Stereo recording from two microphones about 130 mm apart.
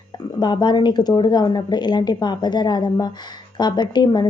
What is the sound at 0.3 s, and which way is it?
A woman's voice, 35° left (ahead or behind).